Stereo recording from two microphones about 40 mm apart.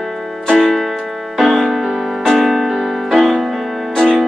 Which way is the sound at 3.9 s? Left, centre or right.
Centre.